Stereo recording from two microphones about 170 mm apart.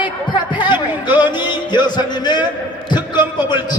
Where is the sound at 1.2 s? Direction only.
25° left (ahead or behind).